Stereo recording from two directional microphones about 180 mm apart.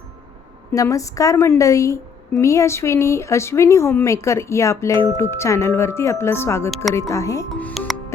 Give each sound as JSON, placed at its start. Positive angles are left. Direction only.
{"t": 0.7, "sound": "speech", "side_deg": 20}
{"t": 7.7, "sound": "music", "side_deg": 0}